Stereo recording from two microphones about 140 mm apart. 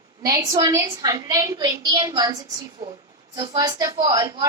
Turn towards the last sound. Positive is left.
turn(degrees=-25)  # may be behind; listen again after turning